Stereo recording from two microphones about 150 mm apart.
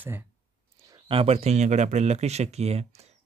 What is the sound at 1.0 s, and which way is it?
Speech, 40° right (ahead or behind).